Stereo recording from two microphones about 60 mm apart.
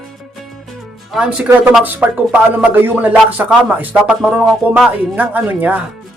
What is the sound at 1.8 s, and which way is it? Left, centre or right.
A man's voice, right.